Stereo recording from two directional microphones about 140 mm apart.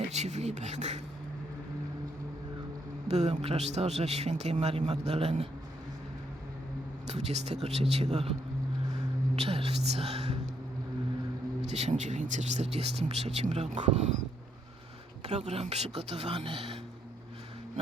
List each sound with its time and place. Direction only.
0.1 s a man's voice: 55° right (ahead or behind)
3.1 s a man's voice: 50° right (ahead or behind)
7.1 s a man's voice: 50° right (ahead or behind)
11.7 s a man's voice: 55° right (ahead or behind)
15.3 s a man's voice: 50° right (ahead or behind)